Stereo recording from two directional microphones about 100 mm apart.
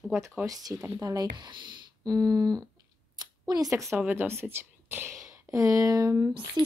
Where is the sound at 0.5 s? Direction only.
40° right (ahead or behind).